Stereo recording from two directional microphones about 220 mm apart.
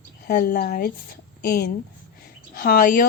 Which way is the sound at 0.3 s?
40° left (ahead or behind).